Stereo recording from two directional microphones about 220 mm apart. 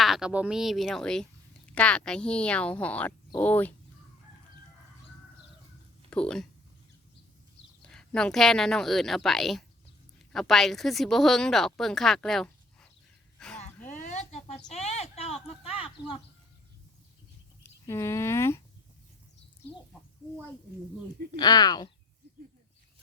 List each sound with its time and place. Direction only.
0.0 s speech: centre (ahead or behind)
6.1 s speech: 5° left (ahead or behind)
7.8 s a woman's voice: 5° left (ahead or behind)
13.4 s a sound: 5° left (ahead or behind)
13.9 s a sound: 35° left (ahead or behind)
14.7 s speech: 30° left (ahead or behind)
17.6 s speech: 10° left (ahead or behind)
21.3 s speech: 20° left (ahead or behind)